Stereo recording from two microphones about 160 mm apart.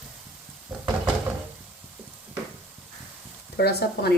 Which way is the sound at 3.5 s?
85° left.